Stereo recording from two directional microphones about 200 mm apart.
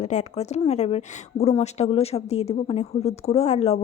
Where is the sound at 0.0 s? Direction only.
35° left (ahead or behind).